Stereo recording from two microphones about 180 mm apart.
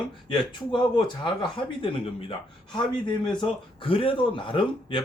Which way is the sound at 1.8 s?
30° left (ahead or behind).